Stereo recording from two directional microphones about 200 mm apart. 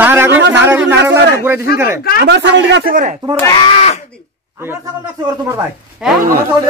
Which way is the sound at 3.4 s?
20° left (ahead or behind).